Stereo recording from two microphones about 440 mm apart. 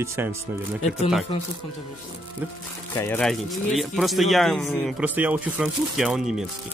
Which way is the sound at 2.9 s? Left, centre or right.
Centre.